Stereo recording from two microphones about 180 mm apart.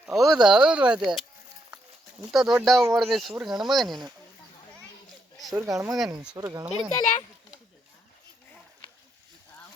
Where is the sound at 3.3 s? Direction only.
10° right (ahead or behind).